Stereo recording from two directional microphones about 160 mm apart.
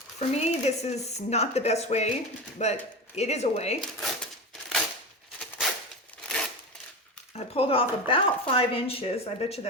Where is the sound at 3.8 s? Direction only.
Centre (ahead or behind).